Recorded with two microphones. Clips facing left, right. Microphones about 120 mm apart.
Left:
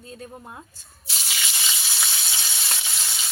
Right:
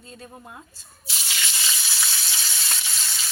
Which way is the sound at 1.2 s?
10° left (ahead or behind).